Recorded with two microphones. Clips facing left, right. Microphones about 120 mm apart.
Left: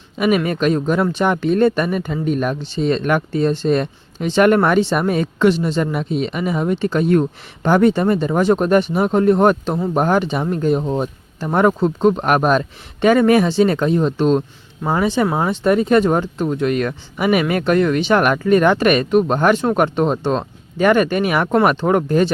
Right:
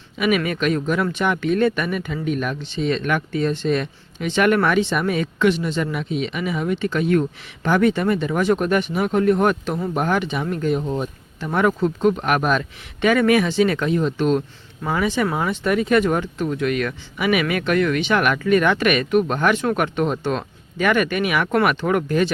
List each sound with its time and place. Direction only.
0.2 s speech: 35° left (ahead or behind)